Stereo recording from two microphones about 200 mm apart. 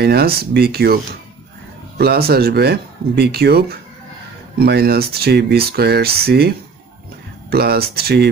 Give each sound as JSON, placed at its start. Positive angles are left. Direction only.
{"t": 0.0, "sound": "speech", "side_deg": -50}
{"t": 2.0, "sound": "speech", "side_deg": -50}